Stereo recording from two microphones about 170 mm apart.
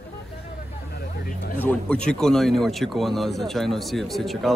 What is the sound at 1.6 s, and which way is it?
Speech, 10° left (ahead or behind).